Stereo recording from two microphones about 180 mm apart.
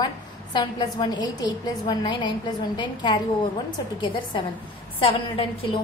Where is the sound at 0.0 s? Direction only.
25° left (ahead or behind).